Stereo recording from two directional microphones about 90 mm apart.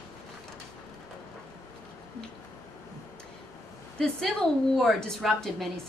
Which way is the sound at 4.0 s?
5° left (ahead or behind).